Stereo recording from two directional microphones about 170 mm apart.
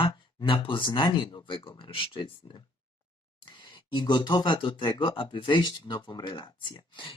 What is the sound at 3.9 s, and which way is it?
Speech, 25° left (ahead or behind).